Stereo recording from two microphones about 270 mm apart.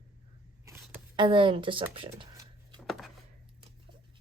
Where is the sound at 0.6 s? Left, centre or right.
Centre.